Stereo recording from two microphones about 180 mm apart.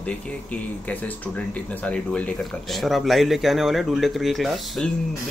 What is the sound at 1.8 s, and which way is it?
Speech, 5° left (ahead or behind).